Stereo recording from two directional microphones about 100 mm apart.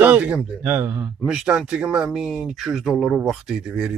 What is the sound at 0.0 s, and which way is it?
Speech, 15° right (ahead or behind).